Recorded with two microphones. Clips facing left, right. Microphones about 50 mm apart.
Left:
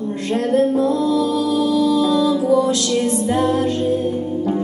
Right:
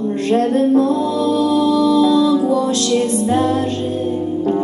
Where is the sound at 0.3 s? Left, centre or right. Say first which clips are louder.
Right 2 dB; right.